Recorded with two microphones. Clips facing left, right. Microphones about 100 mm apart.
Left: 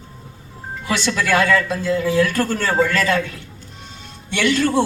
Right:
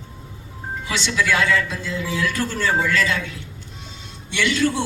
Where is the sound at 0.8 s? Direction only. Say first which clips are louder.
Left 2 dB; 50° left (ahead or behind).